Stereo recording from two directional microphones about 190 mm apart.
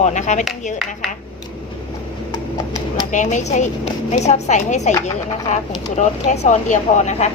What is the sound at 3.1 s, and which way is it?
Speech, 40° left (ahead or behind).